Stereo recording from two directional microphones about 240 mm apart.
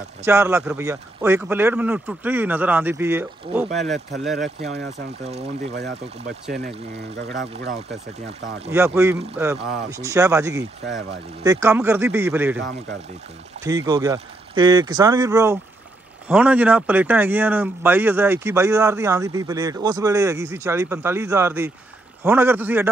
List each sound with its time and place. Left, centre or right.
0.2 s speech: centre
5.6 s speech: right
7.2 s speech: right
8.7 s speech: centre
10.8 s speech: right
11.4 s speech: centre
13.7 s speech: centre